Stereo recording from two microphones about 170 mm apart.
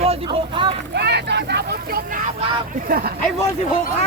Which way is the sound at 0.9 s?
80° right.